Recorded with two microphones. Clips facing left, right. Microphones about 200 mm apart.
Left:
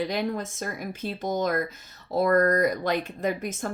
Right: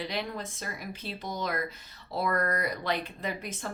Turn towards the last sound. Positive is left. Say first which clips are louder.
# left 7 dB
turn(degrees=45)  # may be behind; listen again after turning